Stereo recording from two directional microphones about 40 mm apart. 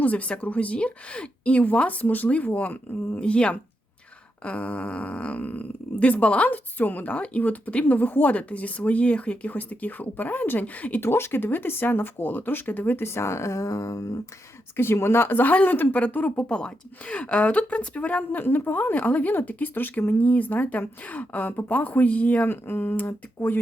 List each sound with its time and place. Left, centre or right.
0.0 s a woman's voice: left
3.2 s a woman's voice: left
6.7 s a woman's voice: left
9.5 s speech: left
11.0 s speech: left
14.8 s speech: left
16.4 s a woman's voice: left
18.3 s speech: left
22.4 s speech: left
23.0 s speech: left